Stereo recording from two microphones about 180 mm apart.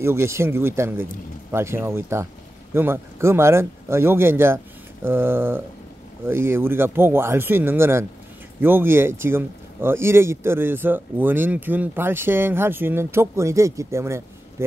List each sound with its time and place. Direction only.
0.0 s speech: 15° right (ahead or behind)